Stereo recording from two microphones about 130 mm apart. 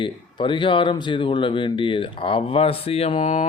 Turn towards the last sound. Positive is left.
turn(degrees=50)  # may be behind; listen again after turning